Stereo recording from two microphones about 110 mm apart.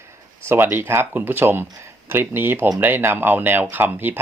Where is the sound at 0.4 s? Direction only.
20° right (ahead or behind).